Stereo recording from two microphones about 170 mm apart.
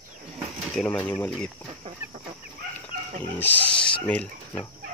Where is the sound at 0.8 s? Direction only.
5° left (ahead or behind).